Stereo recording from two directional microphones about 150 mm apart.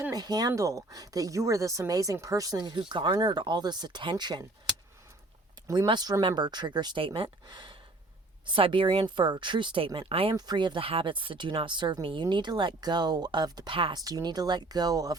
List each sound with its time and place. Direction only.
0.0 s speech: 25° right (ahead or behind)
5.6 s speech: 25° right (ahead or behind)
10.3 s speech: 30° right (ahead or behind)